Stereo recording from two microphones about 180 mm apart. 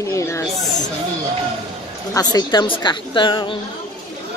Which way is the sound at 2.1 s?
20° left (ahead or behind).